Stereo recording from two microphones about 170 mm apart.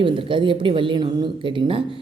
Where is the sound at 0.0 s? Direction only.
30° right (ahead or behind).